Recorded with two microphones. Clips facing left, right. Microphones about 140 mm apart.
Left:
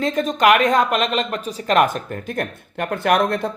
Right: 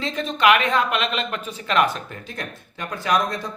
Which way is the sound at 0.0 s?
45° left (ahead or behind).